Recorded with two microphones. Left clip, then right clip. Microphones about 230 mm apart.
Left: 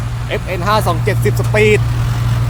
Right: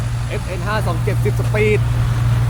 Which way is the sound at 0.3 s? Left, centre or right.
Centre.